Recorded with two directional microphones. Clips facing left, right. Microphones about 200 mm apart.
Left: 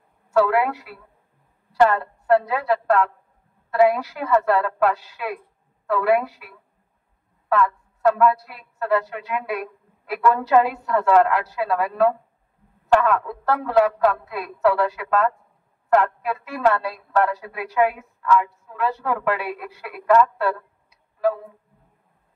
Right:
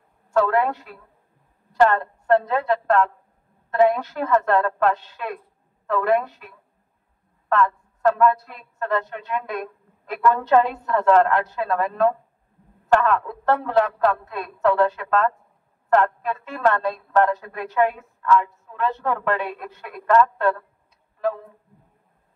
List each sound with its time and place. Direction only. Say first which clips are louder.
0.3 s a woman's voice: left 1 dB; 10° left (ahead or behind)